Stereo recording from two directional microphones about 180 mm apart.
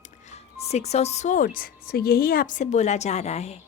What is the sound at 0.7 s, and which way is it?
A woman's voice, 35° left (ahead or behind).